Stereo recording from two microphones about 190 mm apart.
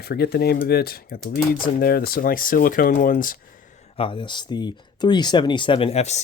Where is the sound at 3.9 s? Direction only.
30° left (ahead or behind).